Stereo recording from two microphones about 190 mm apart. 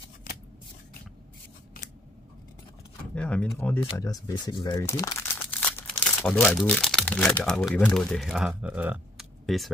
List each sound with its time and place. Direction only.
0.3 s shuffling cards: 45° left (ahead or behind)
3.2 s speech: 5° left (ahead or behind)
3.8 s speech: 20° left (ahead or behind); by 9.7 s centre (ahead or behind)